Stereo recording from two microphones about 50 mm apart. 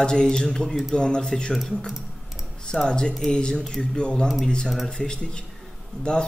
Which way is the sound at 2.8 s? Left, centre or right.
Centre.